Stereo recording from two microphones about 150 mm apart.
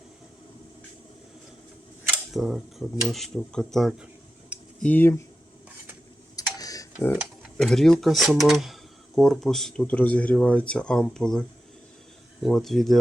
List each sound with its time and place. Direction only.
2.3 s speech: centre (ahead or behind)
4.8 s speech: 10° left (ahead or behind)
6.3 s tick-tock: 25° left (ahead or behind)
7.6 s speech: 5° left (ahead or behind)